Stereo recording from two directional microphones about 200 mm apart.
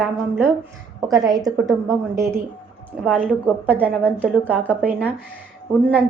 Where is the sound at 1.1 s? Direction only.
20° right (ahead or behind).